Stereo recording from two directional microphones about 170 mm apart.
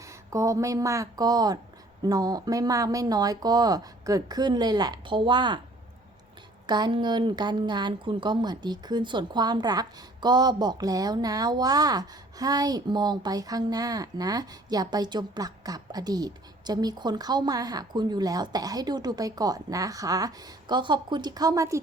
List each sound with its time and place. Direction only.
0.0 s a woman's voice: 20° right (ahead or behind)
6.7 s a woman's voice: 25° right (ahead or behind)